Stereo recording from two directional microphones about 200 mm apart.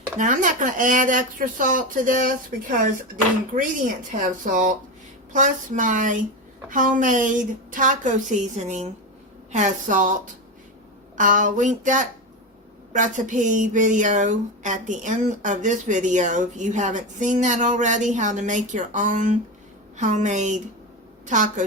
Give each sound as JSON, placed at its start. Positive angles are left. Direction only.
{"t": 0.2, "sound": "speech", "side_deg": -40}
{"t": 11.2, "sound": "speech", "side_deg": -40}